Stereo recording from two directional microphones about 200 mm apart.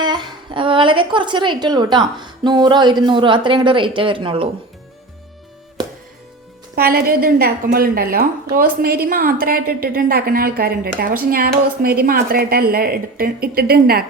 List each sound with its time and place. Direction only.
0.0 s a woman's voice: 20° right (ahead or behind)
6.7 s a woman's voice: 50° right (ahead or behind)